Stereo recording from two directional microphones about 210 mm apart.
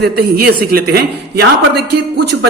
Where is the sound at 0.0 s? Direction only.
45° right (ahead or behind).